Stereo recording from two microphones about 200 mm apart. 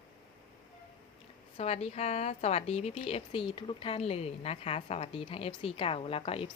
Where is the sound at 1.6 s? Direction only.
30° left (ahead or behind).